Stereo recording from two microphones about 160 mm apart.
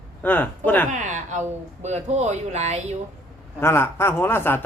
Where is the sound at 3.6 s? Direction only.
15° left (ahead or behind).